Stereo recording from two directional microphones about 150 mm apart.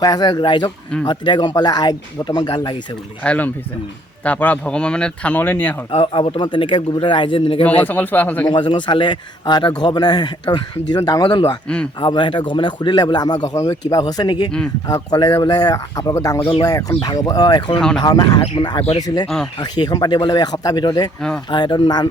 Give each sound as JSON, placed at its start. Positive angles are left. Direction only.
{"t": 0.0, "sound": "a man's voice", "side_deg": 25}
{"t": 3.2, "sound": "speech", "side_deg": 10}
{"t": 5.9, "sound": "speech", "side_deg": 40}
{"t": 7.8, "sound": "speech", "side_deg": 10}
{"t": 8.4, "sound": "a man's voice", "side_deg": 30}
{"t": 17.7, "sound": "speech", "side_deg": 5}
{"t": 18.0, "sound": "a man's voice", "side_deg": 25}
{"t": 21.2, "sound": "speech", "side_deg": 5}
{"t": 21.5, "sound": "a man's voice", "side_deg": 30}